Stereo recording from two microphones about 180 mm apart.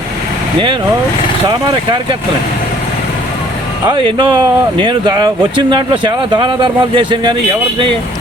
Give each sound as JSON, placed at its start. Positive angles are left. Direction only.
{"t": 1.5, "sound": "speech", "side_deg": -25}
{"t": 3.8, "sound": "speech", "side_deg": -25}